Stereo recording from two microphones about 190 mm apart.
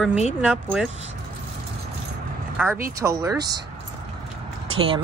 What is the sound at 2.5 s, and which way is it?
Speech, 10° right (ahead or behind).